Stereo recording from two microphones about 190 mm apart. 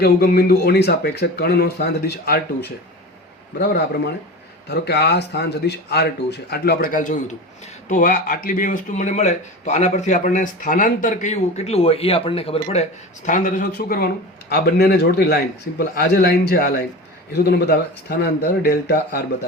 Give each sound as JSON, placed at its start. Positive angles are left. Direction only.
{"t": 0.0, "sound": "a man's voice", "side_deg": 55}